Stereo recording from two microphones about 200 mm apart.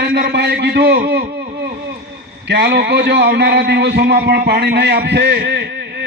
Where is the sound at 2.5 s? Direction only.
55° right (ahead or behind).